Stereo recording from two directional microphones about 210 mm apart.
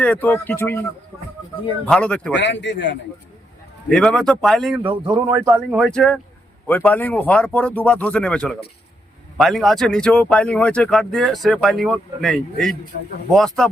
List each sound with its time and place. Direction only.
0.0 s speech: 5° left (ahead or behind)
1.8 s speech: 5° left (ahead or behind)
2.3 s speech: 60° left (ahead or behind)
3.8 s speech: 5° left (ahead or behind)
5.1 s speech: 15° right (ahead or behind)
5.7 s speech: centre (ahead or behind)